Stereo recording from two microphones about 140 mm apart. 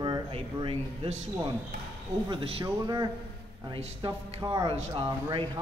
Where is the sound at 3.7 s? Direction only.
35° right (ahead or behind).